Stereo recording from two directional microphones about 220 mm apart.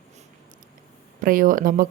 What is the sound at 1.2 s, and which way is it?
Speech, 40° right (ahead or behind).